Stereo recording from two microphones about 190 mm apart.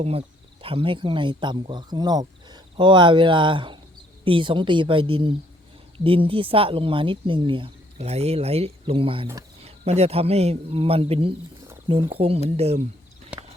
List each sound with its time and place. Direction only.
0.0 s speech: 30° right (ahead or behind)
13.3 s clip-clop: 5° right (ahead or behind)